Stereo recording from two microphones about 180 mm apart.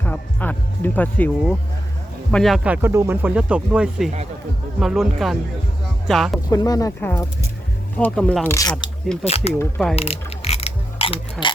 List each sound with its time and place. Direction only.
0.0 s music: 10° left (ahead or behind)
2.3 s speech: centre (ahead or behind)
6.5 s speech: 20° left (ahead or behind)
9.2 s speech: 35° left (ahead or behind)
9.6 s speech: 5° left (ahead or behind)
9.9 s mechanisms: 35° left (ahead or behind)